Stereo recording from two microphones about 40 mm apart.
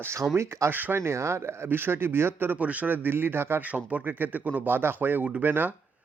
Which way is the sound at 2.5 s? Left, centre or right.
Right.